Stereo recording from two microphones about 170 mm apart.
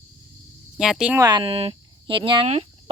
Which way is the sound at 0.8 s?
5° right (ahead or behind).